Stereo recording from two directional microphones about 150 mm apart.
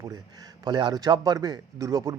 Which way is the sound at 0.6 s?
30° right (ahead or behind).